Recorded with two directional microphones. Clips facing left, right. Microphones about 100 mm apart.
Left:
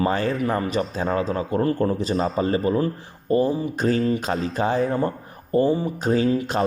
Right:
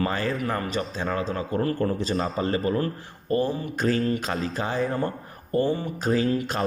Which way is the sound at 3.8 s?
25° left (ahead or behind).